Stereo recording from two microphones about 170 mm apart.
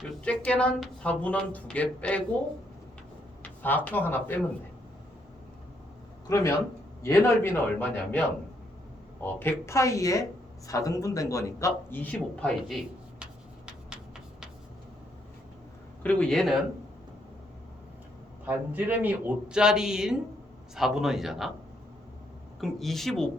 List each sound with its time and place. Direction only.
0.0 s speech: 5° left (ahead or behind)
3.6 s speech: 10° left (ahead or behind)
6.2 s speech: 15° left (ahead or behind)
9.2 s speech: 15° left (ahead or behind)
16.0 s speech: 5° left (ahead or behind)
18.4 s speech: 10° right (ahead or behind)
22.6 s speech: centre (ahead or behind)